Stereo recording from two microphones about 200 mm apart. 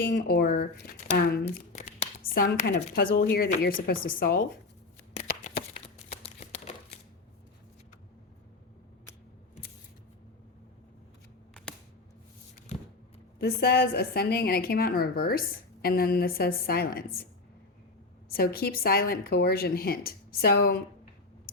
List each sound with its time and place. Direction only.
0.0 s a woman's voice: 45° left (ahead or behind)
1.5 s shuffling cards: 35° left (ahead or behind)
2.4 s a woman's voice: 50° left (ahead or behind)
6.2 s crumpling: 35° left (ahead or behind)
13.4 s a woman's voice: 50° left (ahead or behind)
18.3 s a woman's voice: 50° left (ahead or behind)